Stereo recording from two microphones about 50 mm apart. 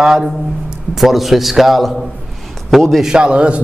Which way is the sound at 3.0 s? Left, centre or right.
Centre.